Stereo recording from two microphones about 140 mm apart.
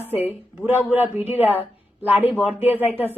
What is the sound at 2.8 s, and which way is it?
Speech, 15° left (ahead or behind).